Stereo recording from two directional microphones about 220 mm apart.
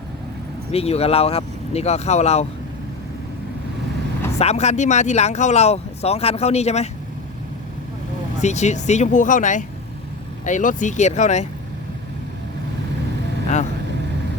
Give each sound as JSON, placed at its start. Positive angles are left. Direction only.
{"t": 0.7, "sound": "speech", "side_deg": 25}
{"t": 4.4, "sound": "speech", "side_deg": 30}
{"t": 8.4, "sound": "speech", "side_deg": 30}